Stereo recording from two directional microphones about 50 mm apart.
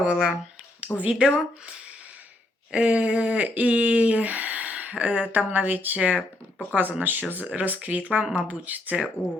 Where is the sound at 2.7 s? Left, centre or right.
Right.